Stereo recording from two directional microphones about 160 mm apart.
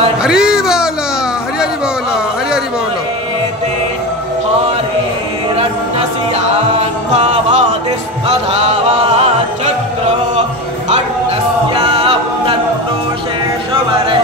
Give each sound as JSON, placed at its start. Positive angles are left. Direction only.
{"t": 0.2, "sound": "a sound", "side_deg": -5}
{"t": 6.8, "sound": "music", "side_deg": -40}
{"t": 11.7, "sound": "a capella", "side_deg": -30}